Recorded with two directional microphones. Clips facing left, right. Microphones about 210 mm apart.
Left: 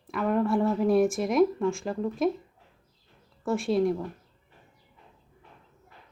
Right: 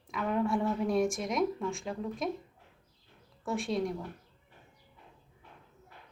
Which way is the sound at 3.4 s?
Centre (ahead or behind).